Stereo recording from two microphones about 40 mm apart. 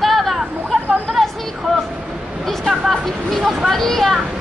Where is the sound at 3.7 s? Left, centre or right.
Centre.